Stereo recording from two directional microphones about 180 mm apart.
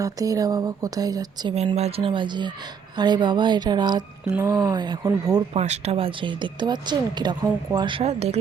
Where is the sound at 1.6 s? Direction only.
35° right (ahead or behind); by 5.4 s 20° right (ahead or behind).